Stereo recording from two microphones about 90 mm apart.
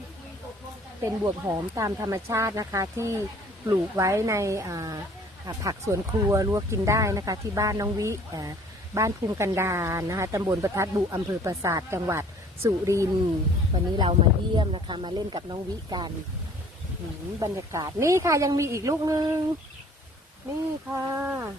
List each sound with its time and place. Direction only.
1.2 s speech: 40° right (ahead or behind)
14.0 s speech: 65° right (ahead or behind)
17.4 s speech: 45° right (ahead or behind)
20.9 s speech: 30° right (ahead or behind)